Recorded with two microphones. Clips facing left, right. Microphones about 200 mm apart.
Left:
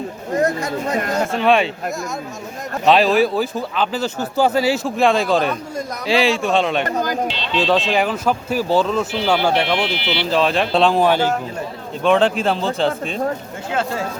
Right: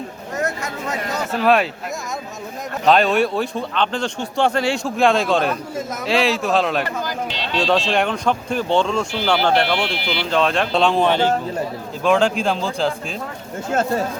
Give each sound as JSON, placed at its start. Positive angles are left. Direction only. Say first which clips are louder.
{"t": 0.3, "sound": "chatter", "louder": "left 6 dB", "side_deg": 35}
{"t": 1.0, "sound": "a sound", "louder": "left 4 dB", "side_deg": 50}
{"t": 1.3, "sound": "speech", "louder": "right 1 dB", "side_deg": 0}
{"t": 2.8, "sound": "speech", "louder": "left 2 dB", "side_deg": 0}
{"t": 6.8, "sound": "speech", "louder": "left 5 dB", "side_deg": 45}
{"t": 7.6, "sound": "speech", "louder": "left 1 dB", "side_deg": 0}